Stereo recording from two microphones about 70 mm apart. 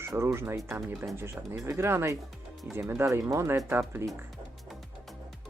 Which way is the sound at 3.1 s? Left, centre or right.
Right.